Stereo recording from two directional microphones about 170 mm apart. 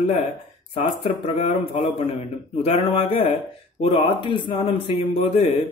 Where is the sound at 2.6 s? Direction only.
35° left (ahead or behind).